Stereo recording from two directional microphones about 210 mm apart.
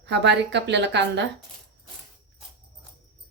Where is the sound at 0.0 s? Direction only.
55° right (ahead or behind).